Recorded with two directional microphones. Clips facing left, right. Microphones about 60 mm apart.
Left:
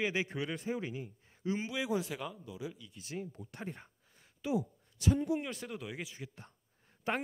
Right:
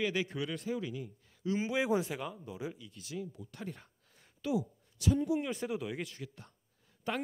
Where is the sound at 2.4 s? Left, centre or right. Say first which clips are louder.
Right 2 dB; right.